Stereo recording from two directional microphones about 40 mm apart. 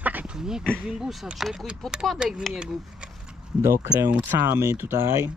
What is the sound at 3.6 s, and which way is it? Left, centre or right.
Speech, right.